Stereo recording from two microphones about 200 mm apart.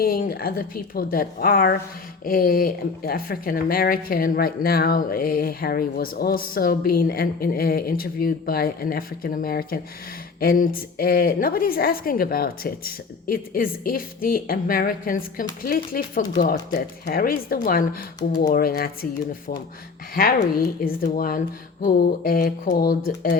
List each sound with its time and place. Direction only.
0.0 s speech: 45° left (ahead or behind)
20.1 s speech: 50° left (ahead or behind)